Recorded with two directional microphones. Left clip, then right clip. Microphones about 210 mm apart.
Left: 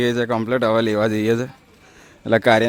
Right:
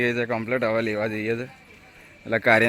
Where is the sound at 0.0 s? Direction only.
25° left (ahead or behind).